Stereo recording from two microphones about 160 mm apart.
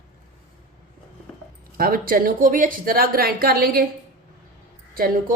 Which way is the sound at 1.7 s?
65° right (ahead or behind).